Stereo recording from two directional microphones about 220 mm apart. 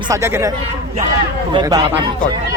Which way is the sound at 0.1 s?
15° right (ahead or behind).